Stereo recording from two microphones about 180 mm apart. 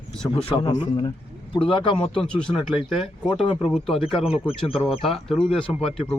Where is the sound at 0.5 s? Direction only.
25° left (ahead or behind).